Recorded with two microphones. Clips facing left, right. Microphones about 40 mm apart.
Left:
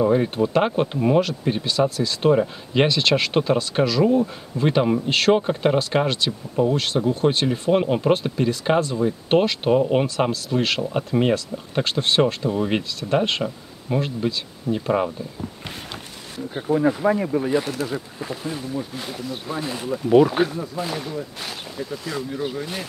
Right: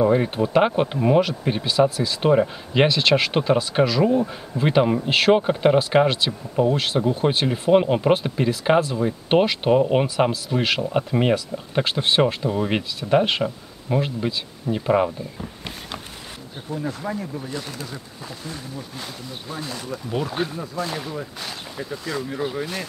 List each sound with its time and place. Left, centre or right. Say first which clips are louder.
0.0 s speech: even; centre
16.5 s speech: left 9 dB; left
17.8 s speech: left 7 dB; centre
20.9 s speech: left 1 dB; centre